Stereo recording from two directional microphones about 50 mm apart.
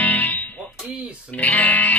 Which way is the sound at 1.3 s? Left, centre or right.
Left.